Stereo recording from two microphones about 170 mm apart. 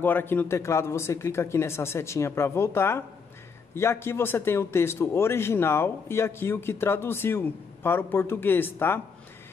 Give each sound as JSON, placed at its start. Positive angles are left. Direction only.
{"t": 0.0, "sound": "a man's voice", "side_deg": 10}